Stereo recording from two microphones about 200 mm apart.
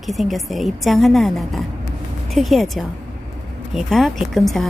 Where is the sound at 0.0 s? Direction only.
Centre (ahead or behind).